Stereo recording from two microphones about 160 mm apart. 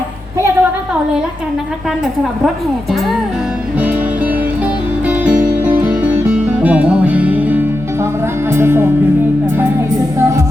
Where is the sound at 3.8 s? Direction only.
10° right (ahead or behind).